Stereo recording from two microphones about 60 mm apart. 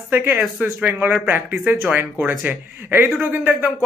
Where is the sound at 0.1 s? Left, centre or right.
Right.